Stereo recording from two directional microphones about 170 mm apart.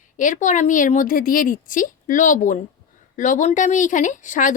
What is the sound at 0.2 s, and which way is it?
Speech, 50° left (ahead or behind).